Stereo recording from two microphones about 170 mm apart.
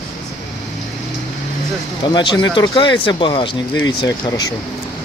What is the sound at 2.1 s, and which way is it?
Speech, 25° left (ahead or behind).